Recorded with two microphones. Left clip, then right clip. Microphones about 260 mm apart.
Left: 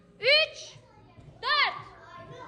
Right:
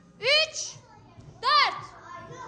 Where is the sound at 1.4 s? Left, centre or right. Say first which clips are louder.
Right 4 dB; right.